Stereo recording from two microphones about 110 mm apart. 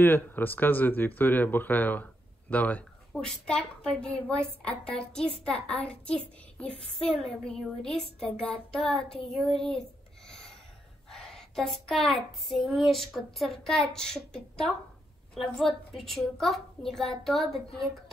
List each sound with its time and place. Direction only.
0.0 s a woman's voice: 20° left (ahead or behind); by 17.8 s centre (ahead or behind)